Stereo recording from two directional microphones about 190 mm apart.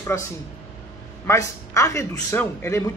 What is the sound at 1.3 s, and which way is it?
A man's voice, 15° left (ahead or behind).